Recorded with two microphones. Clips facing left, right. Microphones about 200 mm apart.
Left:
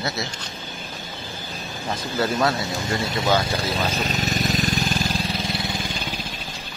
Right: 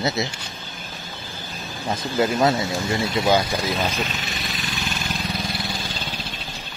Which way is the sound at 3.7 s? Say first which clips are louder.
Right 1 dB; 35° left (ahead or behind).